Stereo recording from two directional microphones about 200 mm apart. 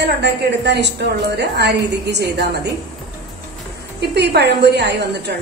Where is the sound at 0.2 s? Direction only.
55° right (ahead or behind).